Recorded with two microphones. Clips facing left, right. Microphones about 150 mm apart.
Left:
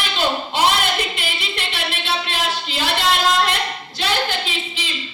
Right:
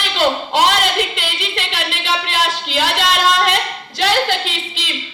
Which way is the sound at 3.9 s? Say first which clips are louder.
Right 6 dB; 85° right.